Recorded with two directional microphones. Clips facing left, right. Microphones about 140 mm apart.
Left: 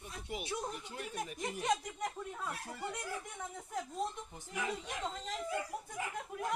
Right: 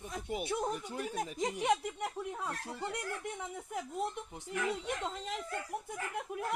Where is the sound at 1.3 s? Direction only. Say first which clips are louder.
Right 3 dB; 85° right.